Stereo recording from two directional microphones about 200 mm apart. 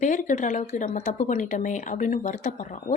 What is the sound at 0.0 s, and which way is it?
Speech, 40° left (ahead or behind).